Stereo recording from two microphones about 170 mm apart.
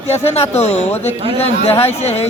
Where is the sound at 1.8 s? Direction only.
40° left (ahead or behind).